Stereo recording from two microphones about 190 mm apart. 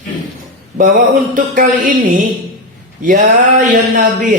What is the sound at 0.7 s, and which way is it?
Speech, 45° right (ahead or behind).